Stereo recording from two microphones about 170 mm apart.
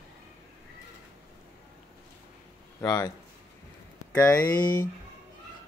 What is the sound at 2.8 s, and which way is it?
Speech, 20° left (ahead or behind).